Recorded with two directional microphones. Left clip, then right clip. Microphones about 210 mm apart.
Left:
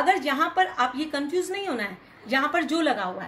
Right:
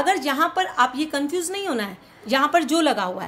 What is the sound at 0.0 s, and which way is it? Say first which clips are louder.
A woman's voice: right 2 dB; 55° right (ahead or behind).